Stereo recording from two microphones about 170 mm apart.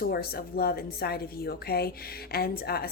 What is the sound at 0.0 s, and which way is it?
A woman's voice, 65° left (ahead or behind).